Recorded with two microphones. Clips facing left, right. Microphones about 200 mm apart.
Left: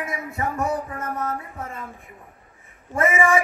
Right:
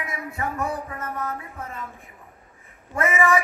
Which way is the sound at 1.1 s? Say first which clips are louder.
Left 4 dB; 30° left (ahead or behind).